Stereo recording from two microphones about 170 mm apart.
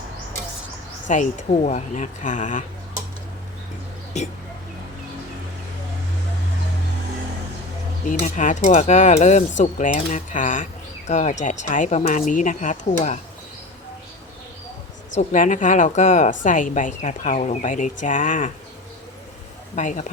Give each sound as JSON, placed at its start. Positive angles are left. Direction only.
{"t": 1.0, "sound": "speech", "side_deg": 45}
{"t": 4.1, "sound": "speech", "side_deg": 40}
{"t": 8.0, "sound": "speech", "side_deg": 50}
{"t": 15.1, "sound": "speech", "side_deg": 45}
{"t": 19.7, "sound": "speech", "side_deg": 45}